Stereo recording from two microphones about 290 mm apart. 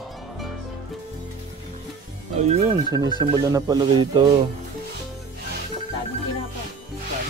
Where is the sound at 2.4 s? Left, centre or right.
Right.